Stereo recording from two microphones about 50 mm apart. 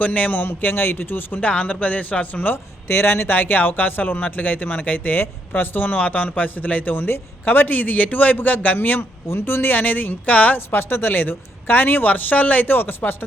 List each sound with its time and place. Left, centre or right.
0.0 s speech: left
1.4 s speech: left
2.9 s speech: left
9.3 s speech: left
10.7 s speech: left